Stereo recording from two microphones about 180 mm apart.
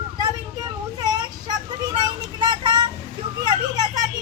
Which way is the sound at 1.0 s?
25° right (ahead or behind).